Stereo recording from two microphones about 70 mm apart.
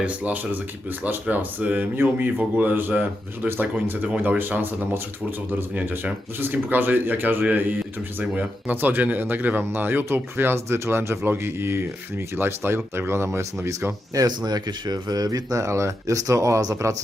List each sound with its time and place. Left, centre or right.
0.0 s speech: centre; by 14.3 s right
14.3 s speech: right